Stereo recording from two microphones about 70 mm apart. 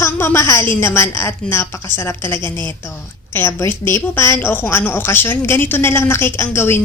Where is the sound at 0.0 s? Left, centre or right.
Left.